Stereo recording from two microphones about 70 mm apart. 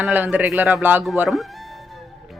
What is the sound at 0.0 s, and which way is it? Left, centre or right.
Speech, right.